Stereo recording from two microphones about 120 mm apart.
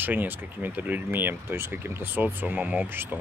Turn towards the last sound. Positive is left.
turn(degrees=-15)  # may be behind; listen again after turning